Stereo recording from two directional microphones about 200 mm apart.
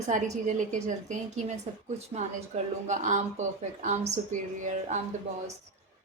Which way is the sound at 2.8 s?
35° right (ahead or behind).